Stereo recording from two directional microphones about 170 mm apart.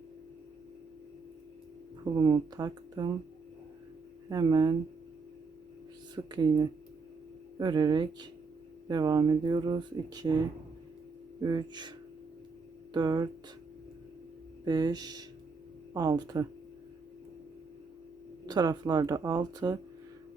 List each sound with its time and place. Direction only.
2.1 s speech: 25° right (ahead or behind)
4.3 s speech: 25° right (ahead or behind)
6.1 s speech: 25° right (ahead or behind)
14.6 s speech: 25° right (ahead or behind)
18.4 s speech: 25° right (ahead or behind)